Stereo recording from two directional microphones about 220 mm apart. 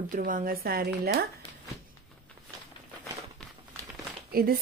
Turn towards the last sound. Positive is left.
turn(degrees=-40)  # may be behind; listen again after turning